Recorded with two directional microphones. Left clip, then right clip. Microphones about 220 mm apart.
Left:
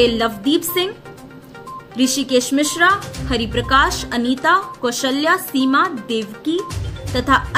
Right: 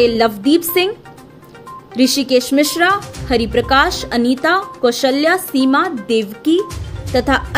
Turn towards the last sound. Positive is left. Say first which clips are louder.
# right 1 dB
turn(degrees=-20)  # may be behind; listen again after turning